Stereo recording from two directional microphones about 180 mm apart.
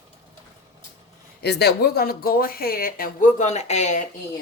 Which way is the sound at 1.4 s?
65° left (ahead or behind).